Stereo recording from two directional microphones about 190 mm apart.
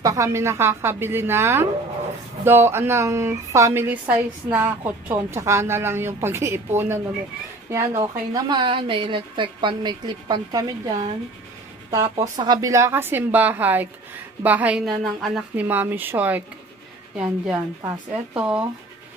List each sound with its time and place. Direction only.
0.0 s a woman's voice: 15° right (ahead or behind)
11.9 s a woman's voice: 20° right (ahead or behind)